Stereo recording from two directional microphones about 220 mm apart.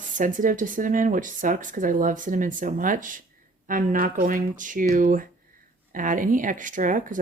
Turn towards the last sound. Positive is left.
turn(degrees=-35)  # may be behind; listen again after turning